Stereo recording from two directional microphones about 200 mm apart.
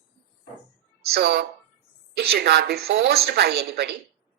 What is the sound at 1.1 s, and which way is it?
A woman's voice, 55° right (ahead or behind).